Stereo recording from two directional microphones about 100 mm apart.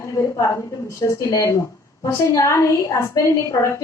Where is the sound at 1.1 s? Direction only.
30° left (ahead or behind).